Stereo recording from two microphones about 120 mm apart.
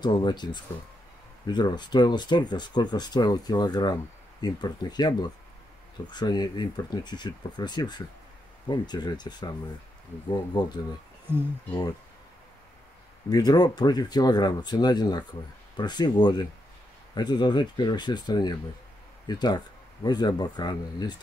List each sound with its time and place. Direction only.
0.0 s speech: 35° left (ahead or behind)
11.3 s speech: 20° right (ahead or behind)
13.3 s speech: 35° left (ahead or behind)